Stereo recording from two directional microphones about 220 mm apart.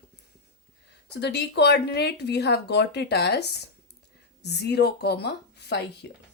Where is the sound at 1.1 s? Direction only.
50° left (ahead or behind).